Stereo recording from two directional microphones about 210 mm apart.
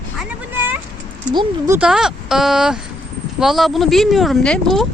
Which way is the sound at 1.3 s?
20° right (ahead or behind).